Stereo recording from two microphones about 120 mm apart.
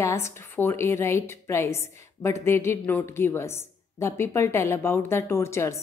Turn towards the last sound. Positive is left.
turn(degrees=25)  # may be behind; listen again after turning